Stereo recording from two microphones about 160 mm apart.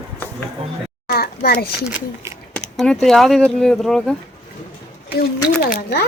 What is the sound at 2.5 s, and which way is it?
Speech, 5° left (ahead or behind).